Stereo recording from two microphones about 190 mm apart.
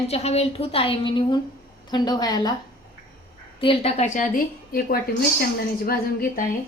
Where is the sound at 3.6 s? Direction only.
30° left (ahead or behind); by 6.5 s 50° left (ahead or behind).